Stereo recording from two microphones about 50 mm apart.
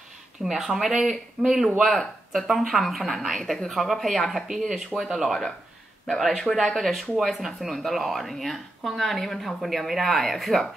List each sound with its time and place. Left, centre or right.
0.4 s speech: centre
1.4 s speech: right
1.8 s speech: centre